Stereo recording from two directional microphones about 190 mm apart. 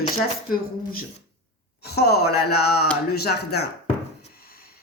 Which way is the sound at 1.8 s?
55° left (ahead or behind).